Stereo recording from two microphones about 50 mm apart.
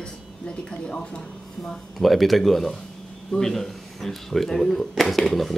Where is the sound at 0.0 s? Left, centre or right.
Centre.